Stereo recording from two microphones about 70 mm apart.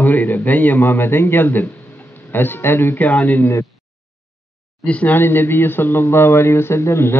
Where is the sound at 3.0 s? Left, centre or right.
Left.